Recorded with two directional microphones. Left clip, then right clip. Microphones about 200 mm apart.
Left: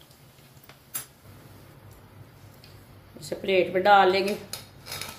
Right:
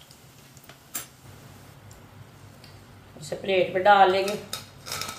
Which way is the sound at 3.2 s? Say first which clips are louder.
Even; 50° left (ahead or behind).